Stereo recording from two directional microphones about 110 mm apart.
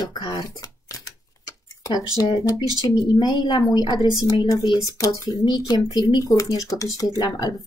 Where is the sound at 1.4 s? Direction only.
35° left (ahead or behind).